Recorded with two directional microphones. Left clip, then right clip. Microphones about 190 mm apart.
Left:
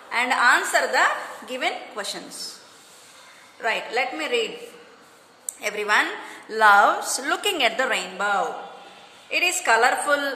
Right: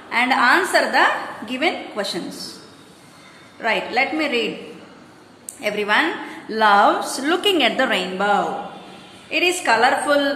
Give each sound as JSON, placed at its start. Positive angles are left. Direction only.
{"t": 0.1, "sound": "a woman's voice", "side_deg": 30}
{"t": 3.6, "sound": "a woman's voice", "side_deg": 25}
{"t": 5.6, "sound": "a woman's voice", "side_deg": 30}